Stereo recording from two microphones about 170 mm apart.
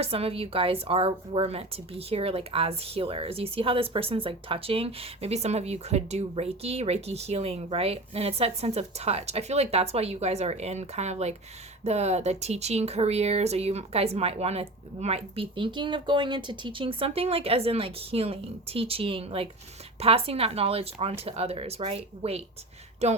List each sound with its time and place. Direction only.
0.0 s a woman's voice: 35° right (ahead or behind)